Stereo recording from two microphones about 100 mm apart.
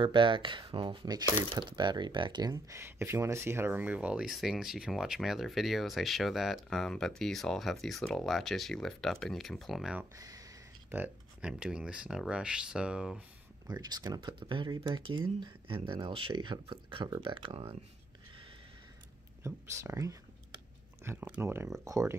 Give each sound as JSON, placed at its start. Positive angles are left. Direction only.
{"t": 0.0, "sound": "speech", "side_deg": -55}
{"t": 2.7, "sound": "speech", "side_deg": -25}
{"t": 10.1, "sound": "a sound", "side_deg": -35}
{"t": 10.9, "sound": "speech", "side_deg": -15}
{"t": 13.7, "sound": "speech", "side_deg": -40}
{"t": 14.4, "sound": "speech", "side_deg": -55}
{"t": 19.4, "sound": "speech", "side_deg": -30}